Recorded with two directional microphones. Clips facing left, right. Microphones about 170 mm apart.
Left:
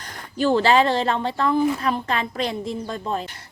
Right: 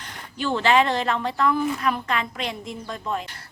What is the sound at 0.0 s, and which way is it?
Speech, 40° left (ahead or behind).